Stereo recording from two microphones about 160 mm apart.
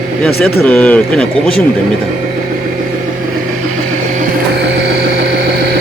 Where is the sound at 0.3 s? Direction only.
75° left (ahead or behind).